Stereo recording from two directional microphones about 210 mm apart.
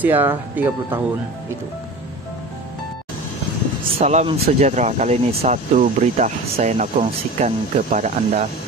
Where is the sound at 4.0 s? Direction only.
30° right (ahead or behind).